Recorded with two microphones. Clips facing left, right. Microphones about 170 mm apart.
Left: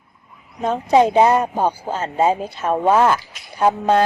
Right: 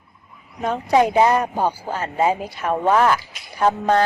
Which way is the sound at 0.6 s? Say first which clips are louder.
Left 2 dB; 20° left (ahead or behind).